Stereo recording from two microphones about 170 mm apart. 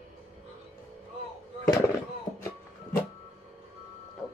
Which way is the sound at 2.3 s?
40° left (ahead or behind).